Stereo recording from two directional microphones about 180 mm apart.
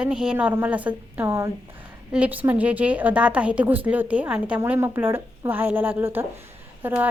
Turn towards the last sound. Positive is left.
turn(degrees=-10)  # may be behind; listen again after turning